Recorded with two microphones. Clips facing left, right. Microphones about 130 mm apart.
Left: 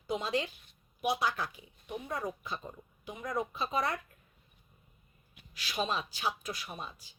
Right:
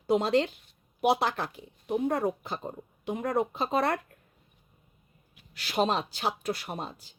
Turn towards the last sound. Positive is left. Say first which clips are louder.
# right 8 dB
turn(degrees=-65)  # may be behind; listen again after turning